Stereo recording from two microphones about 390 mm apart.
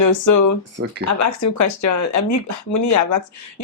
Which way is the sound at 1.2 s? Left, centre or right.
Left.